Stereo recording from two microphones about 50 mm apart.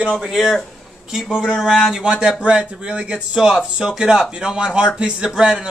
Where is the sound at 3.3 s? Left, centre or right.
Centre.